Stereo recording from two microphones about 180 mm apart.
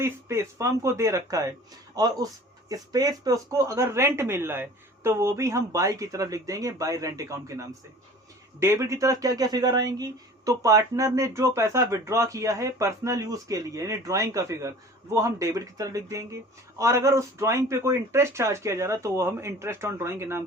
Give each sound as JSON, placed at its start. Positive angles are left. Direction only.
{"t": 0.0, "sound": "speech", "side_deg": -15}